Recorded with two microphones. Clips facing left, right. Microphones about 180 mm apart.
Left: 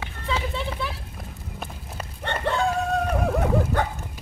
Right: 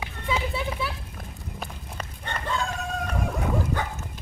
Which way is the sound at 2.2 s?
65° left (ahead or behind).